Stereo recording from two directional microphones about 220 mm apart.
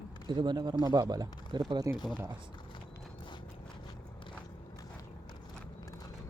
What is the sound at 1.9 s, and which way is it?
Speech, 20° left (ahead or behind).